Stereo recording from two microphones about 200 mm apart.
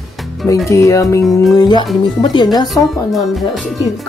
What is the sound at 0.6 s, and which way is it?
Speech, 15° left (ahead or behind).